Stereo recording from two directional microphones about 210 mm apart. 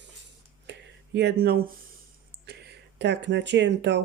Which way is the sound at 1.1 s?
50° right (ahead or behind).